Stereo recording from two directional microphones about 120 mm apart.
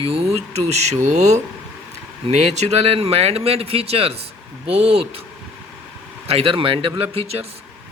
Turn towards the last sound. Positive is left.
turn(degrees=-55)  # may be behind; listen again after turning